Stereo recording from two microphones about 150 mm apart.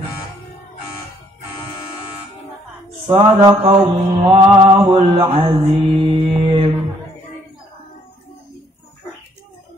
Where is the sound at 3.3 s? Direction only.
30° right (ahead or behind).